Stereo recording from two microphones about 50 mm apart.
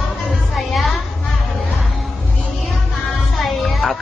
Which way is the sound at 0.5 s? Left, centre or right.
Centre.